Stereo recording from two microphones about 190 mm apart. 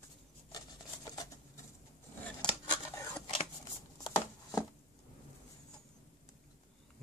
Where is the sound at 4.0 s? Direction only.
15° left (ahead or behind).